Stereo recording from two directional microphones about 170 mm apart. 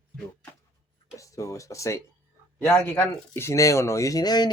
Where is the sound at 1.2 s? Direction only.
20° left (ahead or behind).